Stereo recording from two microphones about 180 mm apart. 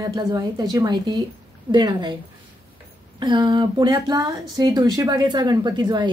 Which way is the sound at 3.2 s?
25° right (ahead or behind).